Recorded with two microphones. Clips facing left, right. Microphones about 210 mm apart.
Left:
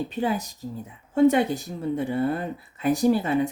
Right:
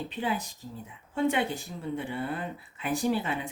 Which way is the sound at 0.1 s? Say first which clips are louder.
Left 5 dB; 40° left (ahead or behind).